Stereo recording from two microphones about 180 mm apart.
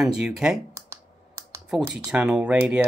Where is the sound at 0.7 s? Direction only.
15° right (ahead or behind).